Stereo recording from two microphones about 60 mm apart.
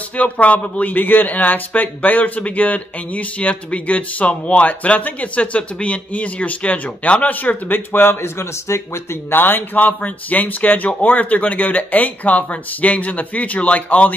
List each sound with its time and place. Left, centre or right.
0.2 s a man's voice: left
9.3 s a man's voice: left